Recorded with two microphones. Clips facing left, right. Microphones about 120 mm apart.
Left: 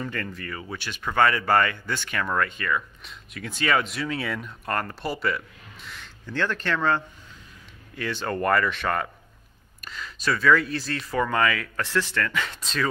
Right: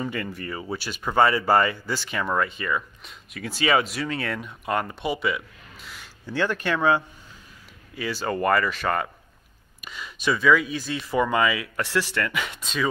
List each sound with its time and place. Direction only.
0.0 s speech: 10° right (ahead or behind)
3.1 s speech: centre (ahead or behind)